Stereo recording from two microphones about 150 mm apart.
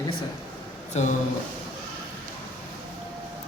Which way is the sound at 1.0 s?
45° left (ahead or behind).